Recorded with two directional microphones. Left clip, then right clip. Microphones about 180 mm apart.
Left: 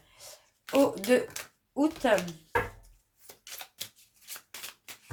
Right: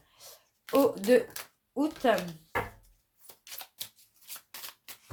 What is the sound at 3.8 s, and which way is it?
Shuffling cards, 10° right (ahead or behind).